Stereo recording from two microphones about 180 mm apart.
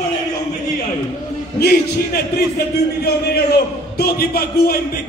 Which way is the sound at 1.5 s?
60° left (ahead or behind).